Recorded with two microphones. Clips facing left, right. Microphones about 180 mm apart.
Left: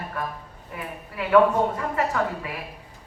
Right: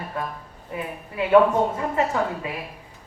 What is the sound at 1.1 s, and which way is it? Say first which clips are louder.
Speech: right 2 dB; 20° right (ahead or behind).